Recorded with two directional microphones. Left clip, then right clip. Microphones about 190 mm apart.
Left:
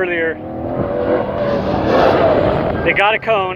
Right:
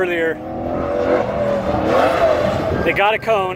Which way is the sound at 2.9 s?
15° right (ahead or behind).